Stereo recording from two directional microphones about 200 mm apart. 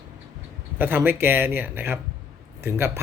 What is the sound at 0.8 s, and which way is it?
Speech, 10° right (ahead or behind).